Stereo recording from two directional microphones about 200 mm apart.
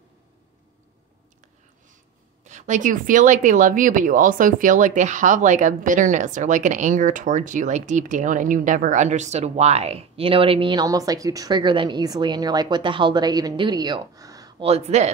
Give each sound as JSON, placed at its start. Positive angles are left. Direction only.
{"t": 2.4, "sound": "speech", "side_deg": -35}
{"t": 14.6, "sound": "speech", "side_deg": -30}